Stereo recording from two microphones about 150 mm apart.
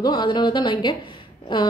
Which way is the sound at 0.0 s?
30° left (ahead or behind).